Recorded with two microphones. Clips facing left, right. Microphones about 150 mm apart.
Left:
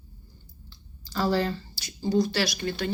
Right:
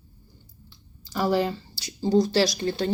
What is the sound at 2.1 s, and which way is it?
Speech, 40° right (ahead or behind).